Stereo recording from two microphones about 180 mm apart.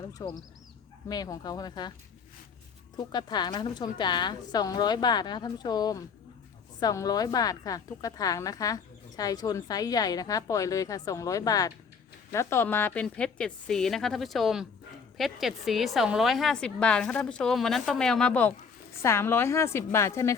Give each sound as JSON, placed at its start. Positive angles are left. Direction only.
{"t": 0.1, "sound": "a woman's voice", "side_deg": 20}
{"t": 3.1, "sound": "a woman's voice", "side_deg": 25}